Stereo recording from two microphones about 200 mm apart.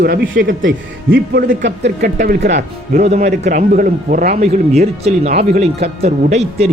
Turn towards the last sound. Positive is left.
turn(degrees=-30)  # may be behind; listen again after turning